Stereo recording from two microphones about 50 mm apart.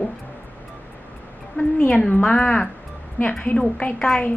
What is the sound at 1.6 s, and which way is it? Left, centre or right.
A woman's voice, left.